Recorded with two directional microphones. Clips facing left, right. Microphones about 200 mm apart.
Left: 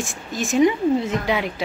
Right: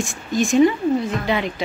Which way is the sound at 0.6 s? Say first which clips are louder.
Right 1 dB; 20° left (ahead or behind).